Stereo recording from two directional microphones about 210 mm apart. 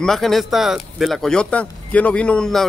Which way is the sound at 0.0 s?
Centre (ahead or behind).